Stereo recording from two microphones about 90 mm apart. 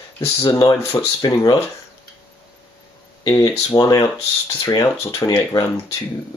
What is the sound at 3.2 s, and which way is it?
Speech, 45° left (ahead or behind).